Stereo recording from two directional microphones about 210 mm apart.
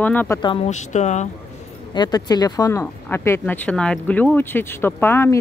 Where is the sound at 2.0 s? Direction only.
20° left (ahead or behind).